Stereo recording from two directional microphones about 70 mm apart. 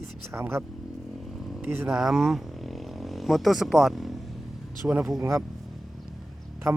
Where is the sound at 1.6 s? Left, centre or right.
Right.